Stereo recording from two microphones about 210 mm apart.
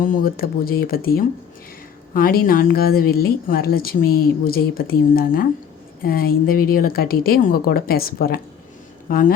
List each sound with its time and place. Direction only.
0.0 s speech: 40° left (ahead or behind)